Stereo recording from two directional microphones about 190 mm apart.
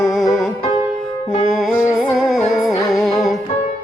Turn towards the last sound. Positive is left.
turn(degrees=0)  # may be behind; listen again after turning